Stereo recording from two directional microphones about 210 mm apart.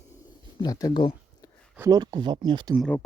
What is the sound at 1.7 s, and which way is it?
Speech, 15° right (ahead or behind).